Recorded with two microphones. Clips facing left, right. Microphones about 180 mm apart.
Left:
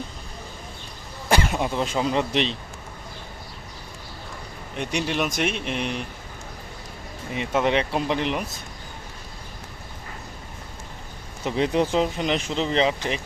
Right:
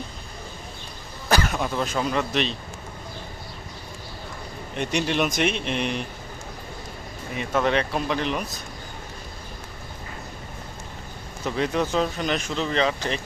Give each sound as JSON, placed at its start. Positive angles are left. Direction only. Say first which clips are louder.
{"t": 1.3, "sound": "cough", "louder": "left 1 dB", "side_deg": 25}
{"t": 1.5, "sound": "speech", "louder": "left 1 dB", "side_deg": 20}
{"t": 4.8, "sound": "speech", "louder": "right 2 dB", "side_deg": 5}
{"t": 7.3, "sound": "speech", "louder": "left 1 dB", "side_deg": 20}
{"t": 11.4, "sound": "speech", "louder": "left 2 dB", "side_deg": 25}